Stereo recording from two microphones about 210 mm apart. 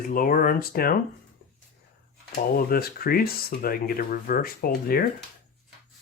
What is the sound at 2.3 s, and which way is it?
Speech, 45° left (ahead or behind).